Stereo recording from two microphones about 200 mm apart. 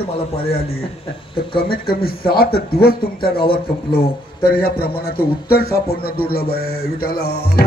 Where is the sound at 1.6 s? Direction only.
50° left (ahead or behind).